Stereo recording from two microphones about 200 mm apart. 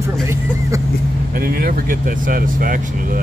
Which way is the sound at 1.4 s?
45° right (ahead or behind).